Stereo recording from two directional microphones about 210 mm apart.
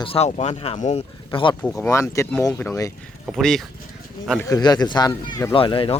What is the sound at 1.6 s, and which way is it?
Speech, 10° left (ahead or behind).